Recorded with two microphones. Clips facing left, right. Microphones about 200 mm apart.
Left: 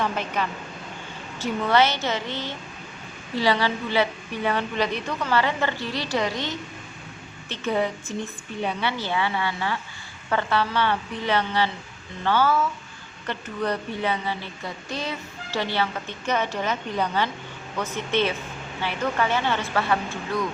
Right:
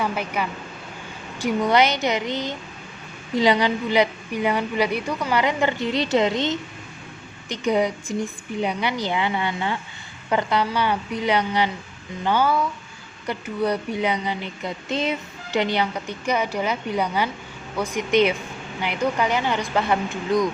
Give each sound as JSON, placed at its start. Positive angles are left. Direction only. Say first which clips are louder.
{"t": 0.0, "sound": "a woman's voice", "louder": "right 1 dB", "side_deg": -10}